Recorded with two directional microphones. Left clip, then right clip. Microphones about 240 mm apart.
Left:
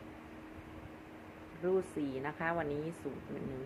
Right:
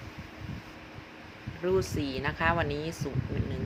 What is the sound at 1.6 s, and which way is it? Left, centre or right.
Speech, centre.